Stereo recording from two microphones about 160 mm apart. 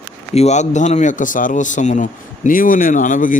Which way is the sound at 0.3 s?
45° left (ahead or behind).